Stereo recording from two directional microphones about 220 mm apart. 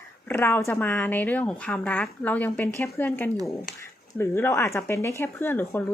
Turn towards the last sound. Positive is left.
turn(degrees=10)  # may be behind; listen again after turning